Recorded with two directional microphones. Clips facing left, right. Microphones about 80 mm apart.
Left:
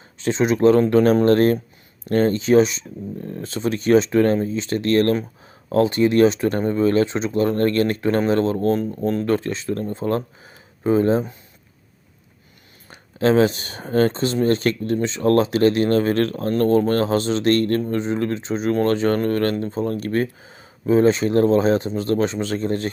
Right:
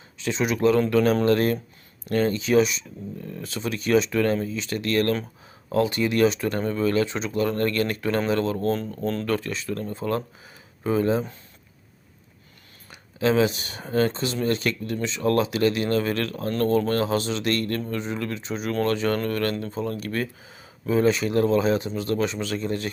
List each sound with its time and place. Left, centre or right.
0.2 s speech: left
12.9 s speech: left